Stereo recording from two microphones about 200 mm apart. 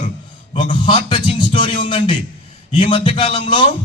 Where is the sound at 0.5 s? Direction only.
25° left (ahead or behind).